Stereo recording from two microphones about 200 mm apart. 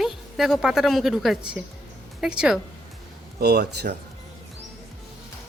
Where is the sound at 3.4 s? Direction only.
55° right (ahead or behind).